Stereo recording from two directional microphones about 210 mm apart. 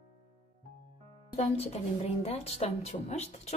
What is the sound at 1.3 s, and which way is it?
A woman's voice, 30° left (ahead or behind).